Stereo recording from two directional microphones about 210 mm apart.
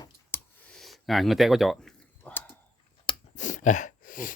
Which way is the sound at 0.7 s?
Centre (ahead or behind).